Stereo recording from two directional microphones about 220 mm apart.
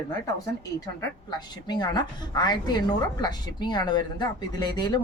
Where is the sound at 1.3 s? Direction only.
20° left (ahead or behind).